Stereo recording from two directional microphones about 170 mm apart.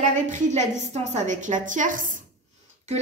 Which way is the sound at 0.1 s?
45° right (ahead or behind).